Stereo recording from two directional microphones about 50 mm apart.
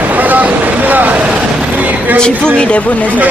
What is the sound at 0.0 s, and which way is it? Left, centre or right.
Vehicle, right.